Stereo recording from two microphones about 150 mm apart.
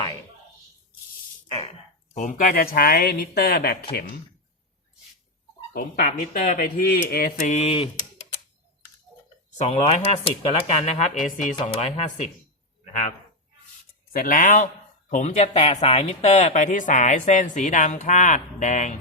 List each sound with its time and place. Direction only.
2.1 s speech: 65° left (ahead or behind); by 3.8 s 90° left
5.7 s speech: 80° left
7.1 s mantra: 90° left
7.3 s speech: 50° left (ahead or behind)
9.6 s speech: 45° left (ahead or behind)
12.8 s a sound: 55° left (ahead or behind)
14.1 s speech: 65° left (ahead or behind)